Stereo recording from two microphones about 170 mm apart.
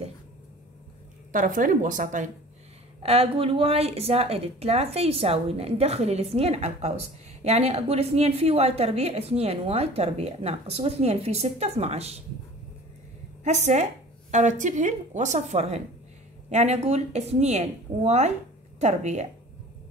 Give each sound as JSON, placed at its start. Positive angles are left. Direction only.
{"t": 1.3, "sound": "speech", "side_deg": -50}
{"t": 3.0, "sound": "a woman's voice", "side_deg": -35}
{"t": 13.4, "sound": "a woman's voice", "side_deg": -45}